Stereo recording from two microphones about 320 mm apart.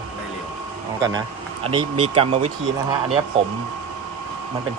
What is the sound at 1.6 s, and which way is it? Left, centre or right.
Speech, centre.